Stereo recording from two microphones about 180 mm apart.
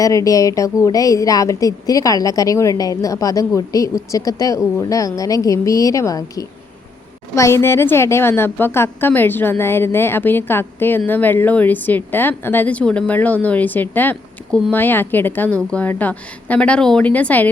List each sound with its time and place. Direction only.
0.0 s a woman's voice: 20° left (ahead or behind)